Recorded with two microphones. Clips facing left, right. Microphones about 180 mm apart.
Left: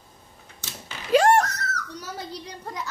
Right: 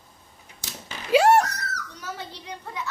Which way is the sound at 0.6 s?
10° right (ahead or behind).